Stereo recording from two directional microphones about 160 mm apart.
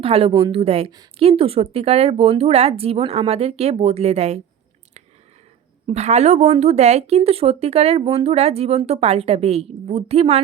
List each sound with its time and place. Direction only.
0.0 s speech: 35° right (ahead or behind)
5.8 s speech: 45° right (ahead or behind)